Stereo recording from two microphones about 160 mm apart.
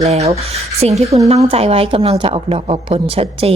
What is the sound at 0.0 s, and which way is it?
A woman's voice, 40° right (ahead or behind).